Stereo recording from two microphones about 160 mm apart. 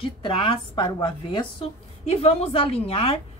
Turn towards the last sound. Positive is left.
turn(degrees=35)  # may be behind; listen again after turning